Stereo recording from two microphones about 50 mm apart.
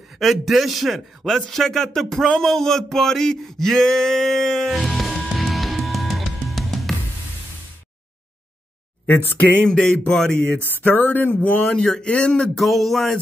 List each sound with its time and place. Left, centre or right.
0.2 s a man's voice: centre
5.4 s music: centre
9.0 s speech: left
9.8 s speech: centre
10.6 s a sound: left
11.7 s speech: centre
12.5 s a man's voice: centre